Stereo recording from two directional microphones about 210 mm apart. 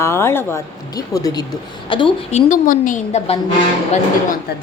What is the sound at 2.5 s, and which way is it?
Speech, 40° left (ahead or behind).